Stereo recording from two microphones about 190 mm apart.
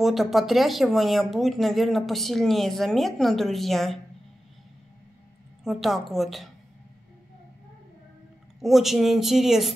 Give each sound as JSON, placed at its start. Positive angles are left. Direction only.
{"t": 0.0, "sound": "speech", "side_deg": 0}
{"t": 5.6, "sound": "speech", "side_deg": 0}
{"t": 8.5, "sound": "speech", "side_deg": 0}